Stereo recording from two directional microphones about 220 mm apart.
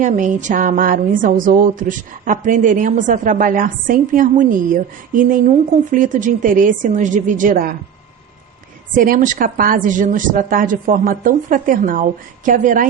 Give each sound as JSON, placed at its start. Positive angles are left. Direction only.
{"t": 0.0, "sound": "a woman's voice", "side_deg": -35}
{"t": 9.0, "sound": "a woman's voice", "side_deg": -40}